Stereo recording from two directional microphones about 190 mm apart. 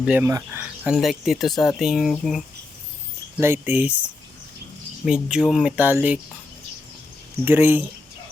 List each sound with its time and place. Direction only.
0.0 s speech: 5° right (ahead or behind)
3.3 s speech: 10° right (ahead or behind)
5.0 s speech: 5° right (ahead or behind)
7.4 s speech: 10° right (ahead or behind)